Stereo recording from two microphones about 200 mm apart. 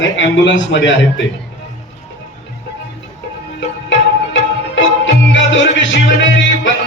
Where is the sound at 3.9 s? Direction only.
65° left (ahead or behind).